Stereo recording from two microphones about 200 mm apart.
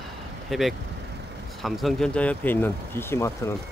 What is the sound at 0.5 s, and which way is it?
Speech, centre (ahead or behind).